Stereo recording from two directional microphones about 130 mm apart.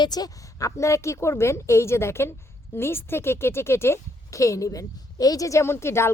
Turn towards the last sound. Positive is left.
turn(degrees=20)  # may be behind; listen again after turning